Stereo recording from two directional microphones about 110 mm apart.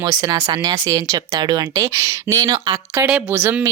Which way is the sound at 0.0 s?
35° right (ahead or behind).